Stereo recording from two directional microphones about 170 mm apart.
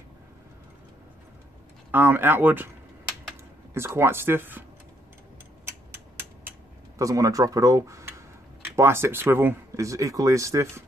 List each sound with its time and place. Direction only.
1.9 s speech: 10° right (ahead or behind)
3.7 s speech: 15° right (ahead or behind)
7.0 s speech: 20° right (ahead or behind)